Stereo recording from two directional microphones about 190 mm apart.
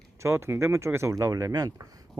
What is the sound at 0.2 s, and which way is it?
Speech, 15° right (ahead or behind).